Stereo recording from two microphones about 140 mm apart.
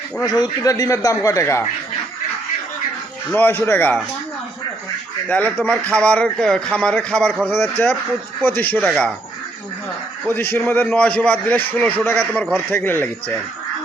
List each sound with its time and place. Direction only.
0.2 s a man's voice: 30° left (ahead or behind)
3.3 s a man's voice: 15° left (ahead or behind)
5.3 s a man's voice: 10° left (ahead or behind)
10.5 s a man's voice: 15° left (ahead or behind)